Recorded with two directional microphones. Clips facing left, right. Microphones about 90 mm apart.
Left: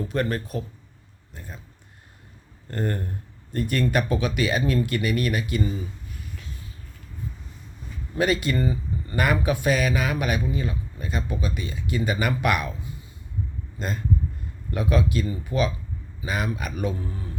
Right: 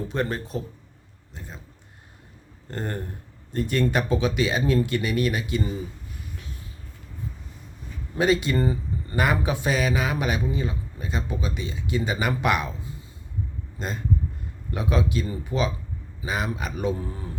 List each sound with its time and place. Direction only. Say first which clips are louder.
0.1 s a man's voice: left 1 dB; 20° right (ahead or behind)
2.6 s a man's voice: left 3 dB; 20° right (ahead or behind)
8.2 s a man's voice: right 1 dB; 25° right (ahead or behind)
13.7 s a man's voice: left 1 dB; 20° right (ahead or behind)